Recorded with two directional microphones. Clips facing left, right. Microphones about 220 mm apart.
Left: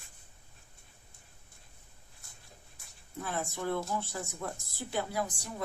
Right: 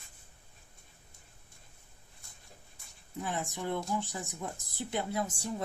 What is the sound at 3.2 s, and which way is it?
A woman's voice, 15° right (ahead or behind).